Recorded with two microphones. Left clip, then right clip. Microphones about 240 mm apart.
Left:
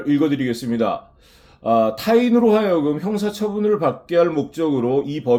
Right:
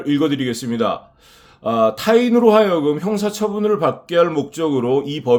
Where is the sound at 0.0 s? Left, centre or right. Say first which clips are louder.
Right 1 dB; right.